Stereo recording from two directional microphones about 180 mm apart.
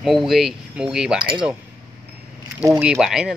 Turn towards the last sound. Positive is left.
turn(degrees=-5)  # may be behind; listen again after turning